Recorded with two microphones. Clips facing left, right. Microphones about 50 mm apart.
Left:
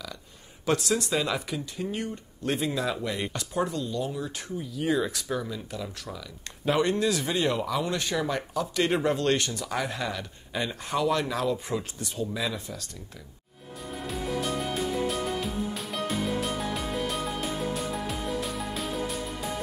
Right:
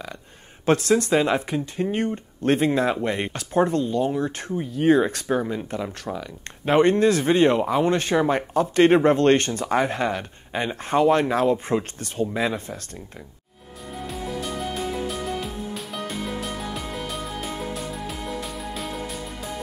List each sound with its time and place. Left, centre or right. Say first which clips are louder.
0.7 s speech: right 7 dB; right
13.9 s music: right 1 dB; centre